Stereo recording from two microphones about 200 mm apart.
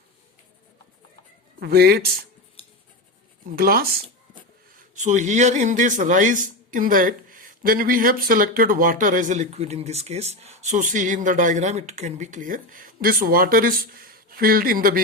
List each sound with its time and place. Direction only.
1.5 s speech: 50° right (ahead or behind)
2.6 s cutlery: 30° left (ahead or behind)
3.5 s speech: 50° right (ahead or behind)
4.8 s speech: 40° right (ahead or behind)